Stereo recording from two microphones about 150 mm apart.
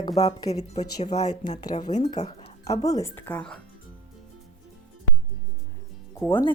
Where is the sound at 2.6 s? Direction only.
25° left (ahead or behind); by 3.6 s 10° left (ahead or behind).